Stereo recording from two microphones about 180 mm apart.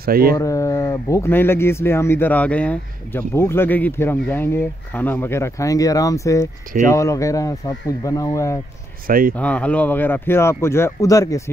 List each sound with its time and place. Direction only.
0.0 s speech: 55° right (ahead or behind)
0.4 s speech: 15° left (ahead or behind)
9.0 s speech: 50° right (ahead or behind)
9.4 s speech: 10° left (ahead or behind)